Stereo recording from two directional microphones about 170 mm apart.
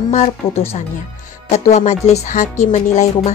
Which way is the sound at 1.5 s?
40° left (ahead or behind).